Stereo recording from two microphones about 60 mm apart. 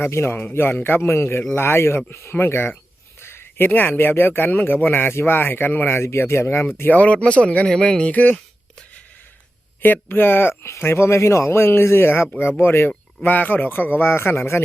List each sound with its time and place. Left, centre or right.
0.0 s speech: left
3.2 s a sound: left
3.7 s speech: left
6.9 s speech: left
9.8 s speech: left